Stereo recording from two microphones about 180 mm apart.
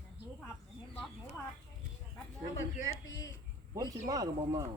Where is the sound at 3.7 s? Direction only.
20° right (ahead or behind).